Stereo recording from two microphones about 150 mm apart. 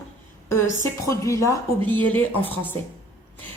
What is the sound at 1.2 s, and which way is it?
A woman's voice, 20° left (ahead or behind).